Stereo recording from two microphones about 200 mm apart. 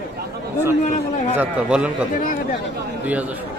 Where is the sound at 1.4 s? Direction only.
5° right (ahead or behind).